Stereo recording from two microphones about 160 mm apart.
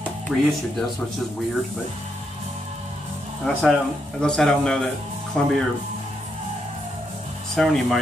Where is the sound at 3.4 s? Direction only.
Centre (ahead or behind).